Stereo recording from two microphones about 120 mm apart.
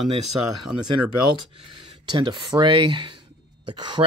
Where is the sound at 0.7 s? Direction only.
5° right (ahead or behind).